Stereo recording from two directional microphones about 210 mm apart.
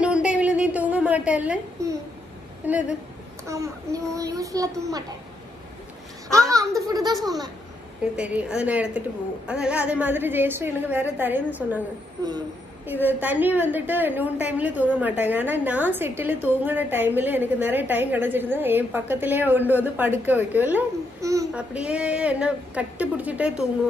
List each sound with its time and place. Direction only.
0.0 s a sound: 5° right (ahead or behind)
2.6 s a woman's voice: 5° right (ahead or behind)
6.5 s a child's voice: 15° right (ahead or behind)
8.0 s a woman's voice: 5° right (ahead or behind)